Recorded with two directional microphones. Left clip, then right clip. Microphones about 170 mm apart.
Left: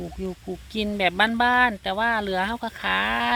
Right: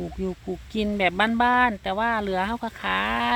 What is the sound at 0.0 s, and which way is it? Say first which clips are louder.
Speech: right 2 dB; 10° right (ahead or behind).